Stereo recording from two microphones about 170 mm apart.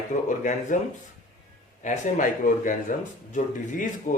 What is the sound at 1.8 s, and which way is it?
Speech, 45° left (ahead or behind).